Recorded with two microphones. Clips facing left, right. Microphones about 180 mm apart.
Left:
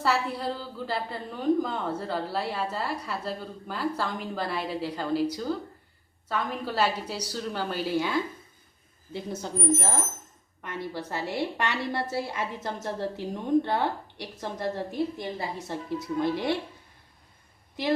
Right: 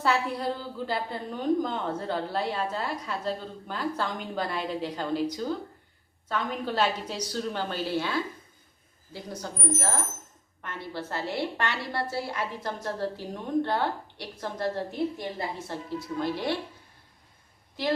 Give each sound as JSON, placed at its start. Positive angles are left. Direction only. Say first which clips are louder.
{"t": 0.0, "sound": "a woman's voice", "louder": "right 1 dB", "side_deg": 0}
{"t": 9.1, "sound": "a woman's voice", "louder": "left 5 dB", "side_deg": 25}